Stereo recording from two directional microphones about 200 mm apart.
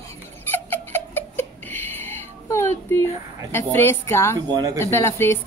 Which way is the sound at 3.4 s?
10° left (ahead or behind).